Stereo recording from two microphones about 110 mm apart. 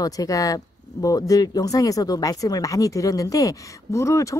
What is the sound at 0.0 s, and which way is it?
Speech, 35° left (ahead or behind).